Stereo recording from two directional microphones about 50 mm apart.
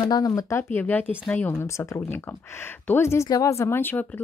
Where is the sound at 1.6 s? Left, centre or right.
Left.